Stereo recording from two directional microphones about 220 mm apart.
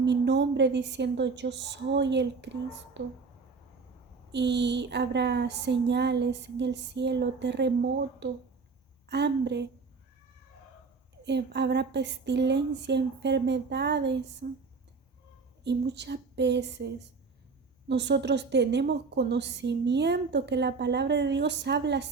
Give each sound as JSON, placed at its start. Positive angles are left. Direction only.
{"t": 0.0, "sound": "a woman's voice", "side_deg": -50}
{"t": 4.3, "sound": "a woman's voice", "side_deg": -50}
{"t": 11.2, "sound": "a woman's voice", "side_deg": -50}
{"t": 15.6, "sound": "a woman's voice", "side_deg": -50}